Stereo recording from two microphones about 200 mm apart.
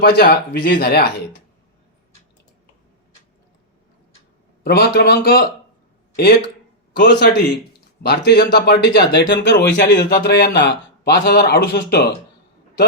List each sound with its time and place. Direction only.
0.0 s speech: 55° left (ahead or behind)
4.6 s speech: 50° left (ahead or behind)
6.9 s speech: 55° left (ahead or behind)